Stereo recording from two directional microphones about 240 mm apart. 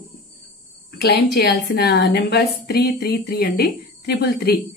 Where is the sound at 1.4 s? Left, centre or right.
Left.